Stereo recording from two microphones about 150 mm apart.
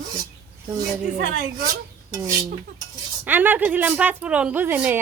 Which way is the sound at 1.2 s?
85° right.